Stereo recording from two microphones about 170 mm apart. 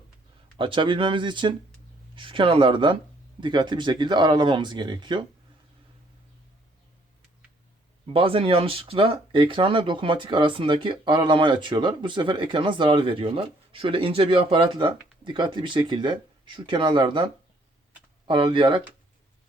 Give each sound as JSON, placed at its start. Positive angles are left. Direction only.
{"t": 0.5, "sound": "speech", "side_deg": -30}
{"t": 8.1, "sound": "speech", "side_deg": -35}
{"t": 18.3, "sound": "speech", "side_deg": -30}